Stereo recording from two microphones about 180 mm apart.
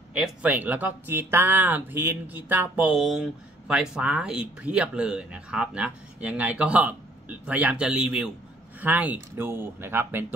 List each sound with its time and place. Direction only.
0.1 s speech: 5° right (ahead or behind)